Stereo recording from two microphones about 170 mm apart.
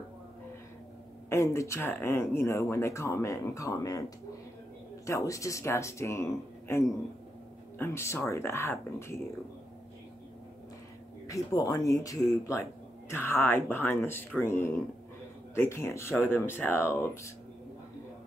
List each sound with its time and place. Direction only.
1.3 s speech: 15° left (ahead or behind)
5.0 s speech: 20° left (ahead or behind)
11.2 s speech: 20° left (ahead or behind)